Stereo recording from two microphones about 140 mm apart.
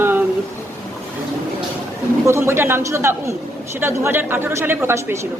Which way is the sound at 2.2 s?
20° right (ahead or behind).